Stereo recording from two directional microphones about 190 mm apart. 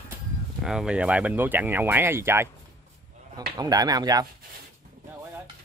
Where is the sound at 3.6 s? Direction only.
20° right (ahead or behind).